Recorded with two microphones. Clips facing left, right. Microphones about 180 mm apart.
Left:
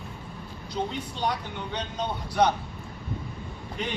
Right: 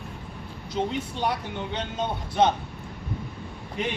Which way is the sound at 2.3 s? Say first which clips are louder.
Right 1 dB; 25° right (ahead or behind).